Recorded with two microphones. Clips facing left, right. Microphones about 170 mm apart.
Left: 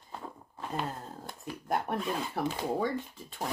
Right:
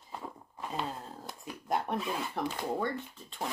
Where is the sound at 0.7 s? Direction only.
Centre (ahead or behind).